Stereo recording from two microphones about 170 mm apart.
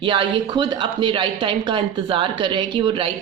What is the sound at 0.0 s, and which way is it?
Speech, 30° right (ahead or behind).